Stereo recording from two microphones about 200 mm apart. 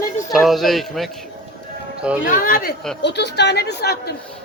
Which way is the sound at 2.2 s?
45° left (ahead or behind).